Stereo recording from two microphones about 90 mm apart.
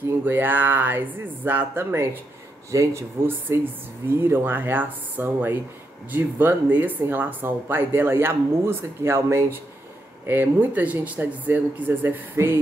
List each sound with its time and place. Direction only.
0.2 s speech: 20° right (ahead or behind)